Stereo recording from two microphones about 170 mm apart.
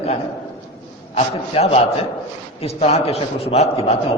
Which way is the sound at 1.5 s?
35° left (ahead or behind).